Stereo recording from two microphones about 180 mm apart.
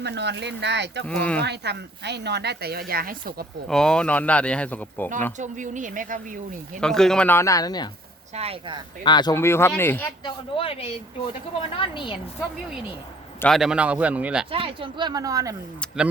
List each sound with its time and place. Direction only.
0.0 s speech: 70° right (ahead or behind)
1.0 s speech: 5° left (ahead or behind)
1.5 s speech: 70° right (ahead or behind)
3.7 s speech: 5° left (ahead or behind)
5.4 s speech: 45° right (ahead or behind)
6.7 s speech: 5° left (ahead or behind); by 7.9 s 20° left (ahead or behind)
8.4 s speech: 30° right (ahead or behind)
9.0 s speech: 25° left (ahead or behind)
10.2 s a woman's voice: 30° left (ahead or behind)
13.4 s speech: centre (ahead or behind)
14.5 s speech: 30° right (ahead or behind)